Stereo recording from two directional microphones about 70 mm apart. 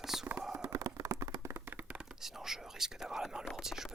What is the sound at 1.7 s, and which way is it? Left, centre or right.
Tap, centre.